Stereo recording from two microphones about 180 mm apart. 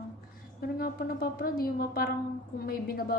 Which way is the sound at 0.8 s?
55° left (ahead or behind).